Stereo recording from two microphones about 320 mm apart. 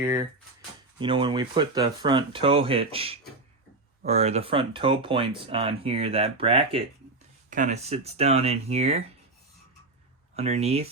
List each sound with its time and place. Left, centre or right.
0.9 s speech: centre
10.3 s speech: centre